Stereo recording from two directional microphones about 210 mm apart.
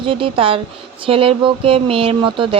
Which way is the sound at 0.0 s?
25° right (ahead or behind).